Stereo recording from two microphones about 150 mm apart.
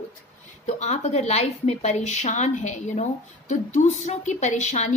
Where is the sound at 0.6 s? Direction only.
50° left (ahead or behind).